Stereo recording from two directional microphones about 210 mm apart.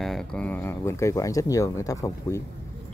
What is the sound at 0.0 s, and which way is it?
Speech, centre (ahead or behind).